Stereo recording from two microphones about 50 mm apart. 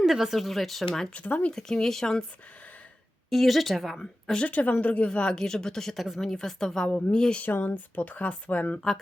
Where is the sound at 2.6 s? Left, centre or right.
Left.